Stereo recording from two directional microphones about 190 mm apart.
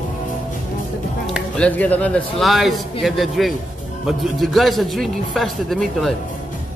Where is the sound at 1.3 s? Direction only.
5° left (ahead or behind).